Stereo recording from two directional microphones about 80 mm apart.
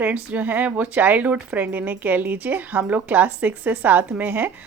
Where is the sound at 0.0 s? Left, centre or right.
Right.